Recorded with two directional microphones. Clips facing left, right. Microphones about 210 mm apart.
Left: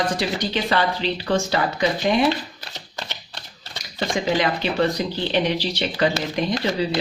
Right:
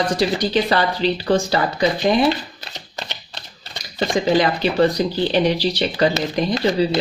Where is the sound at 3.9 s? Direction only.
35° right (ahead or behind).